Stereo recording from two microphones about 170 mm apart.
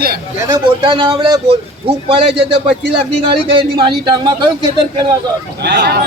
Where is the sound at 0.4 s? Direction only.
25° right (ahead or behind).